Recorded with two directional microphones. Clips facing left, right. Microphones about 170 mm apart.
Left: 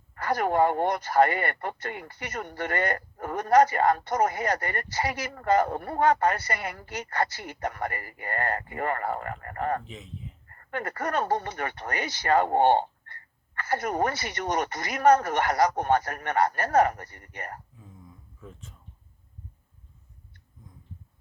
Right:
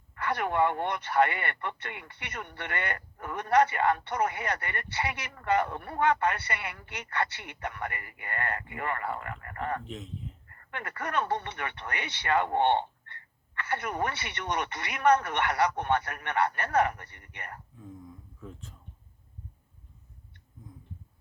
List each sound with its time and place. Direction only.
0.1 s speech: 40° left (ahead or behind)
9.8 s speech: centre (ahead or behind)
10.5 s speech: 40° left (ahead or behind)
18.3 s speech: centre (ahead or behind)